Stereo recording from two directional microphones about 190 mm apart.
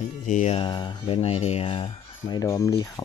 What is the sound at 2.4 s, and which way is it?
Speech, 15° left (ahead or behind).